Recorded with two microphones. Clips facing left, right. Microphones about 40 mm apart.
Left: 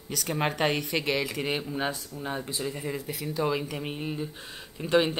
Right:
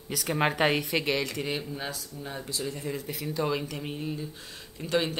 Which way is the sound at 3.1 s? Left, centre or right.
Centre.